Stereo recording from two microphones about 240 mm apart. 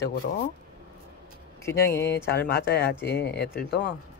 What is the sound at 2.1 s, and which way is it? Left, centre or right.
Speech, left.